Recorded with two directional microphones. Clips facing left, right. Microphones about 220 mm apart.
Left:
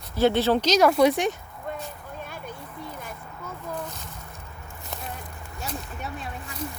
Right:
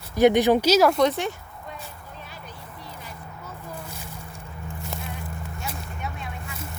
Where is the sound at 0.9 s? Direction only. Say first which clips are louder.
Left 2 dB; 10° left (ahead or behind).